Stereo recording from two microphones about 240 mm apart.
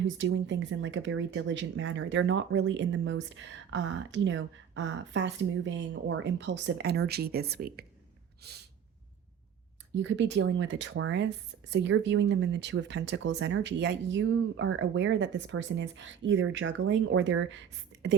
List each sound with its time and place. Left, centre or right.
0.2 s speech: right
9.9 s speech: right